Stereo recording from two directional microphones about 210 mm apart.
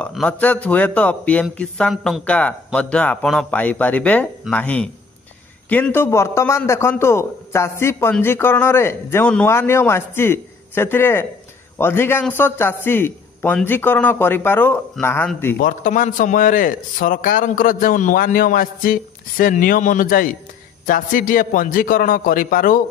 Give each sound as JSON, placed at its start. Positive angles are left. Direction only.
{"t": 0.0, "sound": "a man's voice", "side_deg": 5}
{"t": 15.5, "sound": "a man's voice", "side_deg": 40}